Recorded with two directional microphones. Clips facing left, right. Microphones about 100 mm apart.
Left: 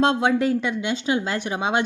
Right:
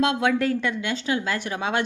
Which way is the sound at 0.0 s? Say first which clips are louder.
Left 2 dB; 30° left (ahead or behind).